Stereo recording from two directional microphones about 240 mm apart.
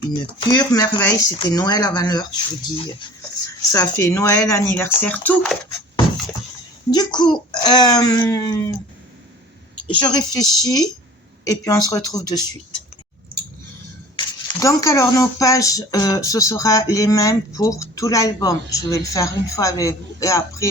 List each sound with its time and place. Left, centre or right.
0.3 s speech: centre
6.9 s speech: centre
9.8 s speech: centre
14.2 s speech: centre